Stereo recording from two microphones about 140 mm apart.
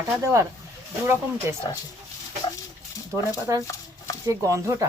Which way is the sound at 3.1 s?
20° right (ahead or behind).